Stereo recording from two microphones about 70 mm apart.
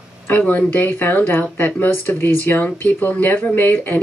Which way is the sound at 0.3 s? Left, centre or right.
Left.